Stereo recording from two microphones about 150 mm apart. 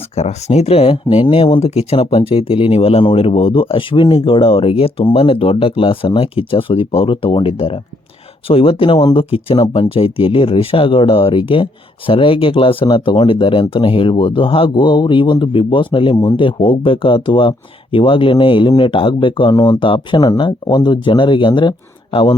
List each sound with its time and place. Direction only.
0.2 s speech: 45° left (ahead or behind)